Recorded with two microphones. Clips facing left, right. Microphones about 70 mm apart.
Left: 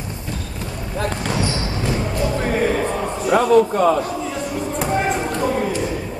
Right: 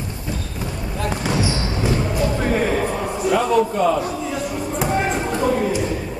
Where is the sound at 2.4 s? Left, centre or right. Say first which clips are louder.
Left 1 dB; centre.